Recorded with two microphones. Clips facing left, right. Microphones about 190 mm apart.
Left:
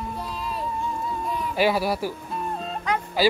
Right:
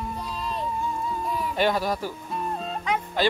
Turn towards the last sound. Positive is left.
turn(degrees=0)  # may be behind; listen again after turning